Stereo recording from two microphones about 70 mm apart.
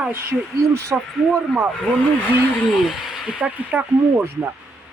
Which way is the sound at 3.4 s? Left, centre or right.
Right.